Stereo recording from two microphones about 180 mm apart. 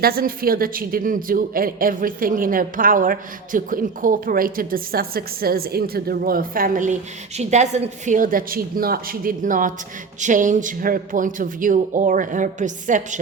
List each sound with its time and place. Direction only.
0.0 s a woman's voice: 55° right (ahead or behind)